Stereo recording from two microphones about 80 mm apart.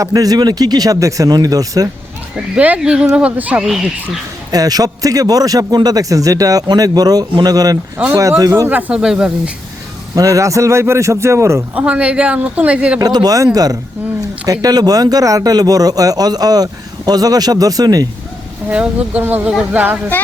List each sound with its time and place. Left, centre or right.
0.0 s a man's voice: right
2.3 s speech: centre
4.5 s a man's voice: right
8.1 s a man's voice: right
8.9 s speech: centre
10.2 s speech: right
11.8 s speech: centre
13.0 s a man's voice: right
18.7 s a woman's voice: centre